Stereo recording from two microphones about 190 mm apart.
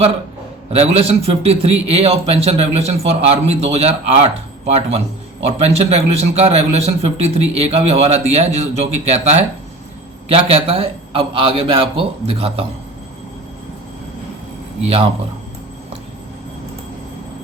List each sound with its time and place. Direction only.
0.7 s a man's voice: 35° right (ahead or behind)